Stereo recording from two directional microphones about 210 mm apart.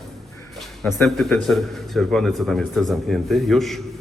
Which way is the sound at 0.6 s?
Centre (ahead or behind).